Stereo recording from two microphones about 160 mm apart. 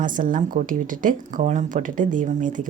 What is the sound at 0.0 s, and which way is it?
Speech, 55° right (ahead or behind).